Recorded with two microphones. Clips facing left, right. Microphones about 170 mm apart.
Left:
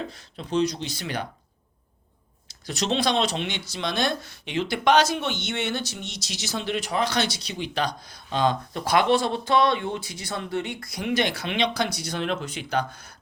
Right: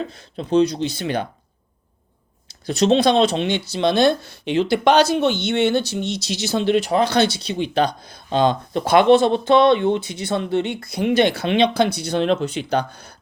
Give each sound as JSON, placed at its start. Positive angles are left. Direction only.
{"t": 0.3, "sound": "speech", "side_deg": -30}
{"t": 2.5, "sound": "a sound", "side_deg": -55}
{"t": 3.3, "sound": "speech", "side_deg": -30}